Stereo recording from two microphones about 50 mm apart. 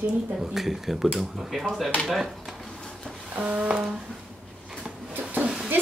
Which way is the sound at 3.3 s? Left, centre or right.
Right.